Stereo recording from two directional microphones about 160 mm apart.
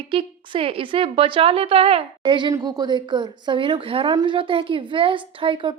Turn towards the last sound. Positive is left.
turn(degrees=-30)  # may be behind; listen again after turning